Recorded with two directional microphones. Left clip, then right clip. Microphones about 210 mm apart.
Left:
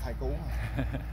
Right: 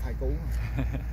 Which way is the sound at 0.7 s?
Centre (ahead or behind).